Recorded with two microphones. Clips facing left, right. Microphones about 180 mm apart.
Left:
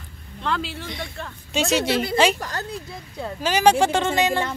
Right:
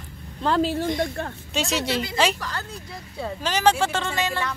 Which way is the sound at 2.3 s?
45° left (ahead or behind).